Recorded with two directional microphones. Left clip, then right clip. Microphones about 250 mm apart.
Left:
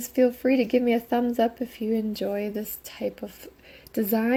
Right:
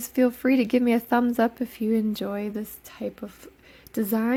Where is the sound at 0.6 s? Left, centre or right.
Right.